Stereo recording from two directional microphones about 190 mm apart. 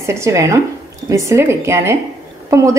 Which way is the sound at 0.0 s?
15° right (ahead or behind).